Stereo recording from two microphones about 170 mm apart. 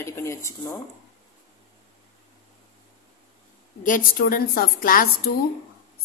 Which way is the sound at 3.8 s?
50° left (ahead or behind).